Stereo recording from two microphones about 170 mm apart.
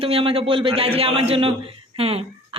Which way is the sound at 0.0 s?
35° right (ahead or behind).